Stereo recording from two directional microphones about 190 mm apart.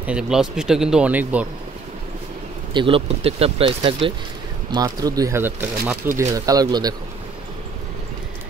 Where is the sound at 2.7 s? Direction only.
25° right (ahead or behind).